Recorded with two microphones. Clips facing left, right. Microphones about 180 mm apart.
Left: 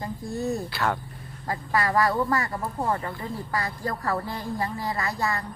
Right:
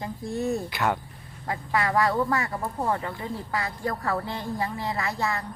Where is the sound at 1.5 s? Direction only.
Centre (ahead or behind).